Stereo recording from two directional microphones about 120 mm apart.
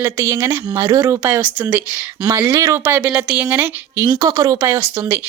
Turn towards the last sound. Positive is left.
turn(degrees=-20)  # may be behind; listen again after turning